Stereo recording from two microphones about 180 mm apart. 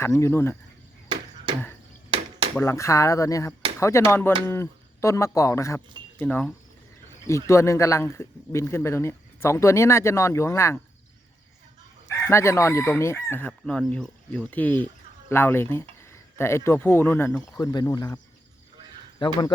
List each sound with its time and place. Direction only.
0.0 s speech: 15° left (ahead or behind)
1.0 s a sound: 25° right (ahead or behind)
2.0 s cutlery: 30° right (ahead or behind)
2.6 s speech: 15° left (ahead or behind)
12.0 s chicken: 15° left (ahead or behind)
13.5 s speech: centre (ahead or behind); by 18.2 s 20° left (ahead or behind)
19.2 s speech: 25° left (ahead or behind)